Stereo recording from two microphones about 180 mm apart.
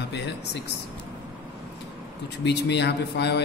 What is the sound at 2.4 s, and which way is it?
Speech, 70° left (ahead or behind).